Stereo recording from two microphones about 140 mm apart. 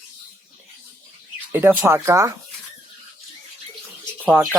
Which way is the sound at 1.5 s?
15° right (ahead or behind).